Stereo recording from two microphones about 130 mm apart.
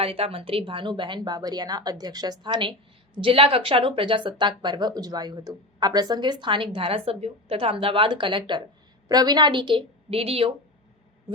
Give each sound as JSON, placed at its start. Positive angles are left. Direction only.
{"t": 0.0, "sound": "speech", "side_deg": -45}